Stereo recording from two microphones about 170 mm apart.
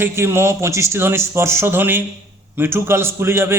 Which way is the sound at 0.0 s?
15° right (ahead or behind).